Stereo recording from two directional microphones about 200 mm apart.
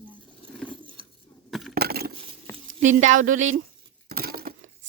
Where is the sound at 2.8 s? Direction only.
35° right (ahead or behind).